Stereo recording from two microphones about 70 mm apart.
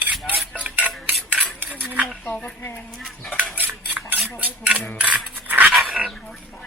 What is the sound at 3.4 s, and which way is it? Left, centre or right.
Cutlery, right.